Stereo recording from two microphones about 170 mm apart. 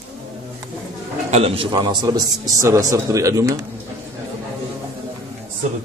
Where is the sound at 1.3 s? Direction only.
35° right (ahead or behind); by 3.5 s 20° right (ahead or behind).